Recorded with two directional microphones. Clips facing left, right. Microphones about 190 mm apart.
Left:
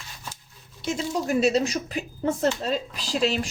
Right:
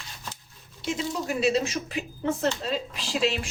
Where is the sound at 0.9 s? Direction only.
40° left (ahead or behind).